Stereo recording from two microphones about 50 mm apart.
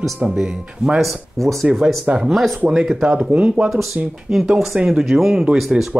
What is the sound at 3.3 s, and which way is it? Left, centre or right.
Speech, right.